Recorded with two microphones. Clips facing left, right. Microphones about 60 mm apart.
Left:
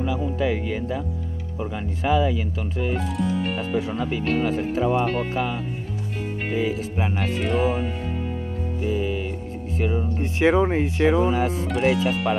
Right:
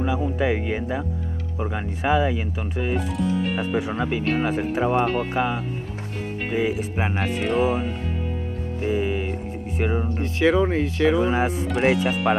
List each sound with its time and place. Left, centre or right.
0.0 s speech: right
3.0 s music: centre
3.7 s speech: right
7.3 s speech: centre
8.8 s speech: right
10.2 s speech: left
11.2 s speech: right
11.6 s speech: centre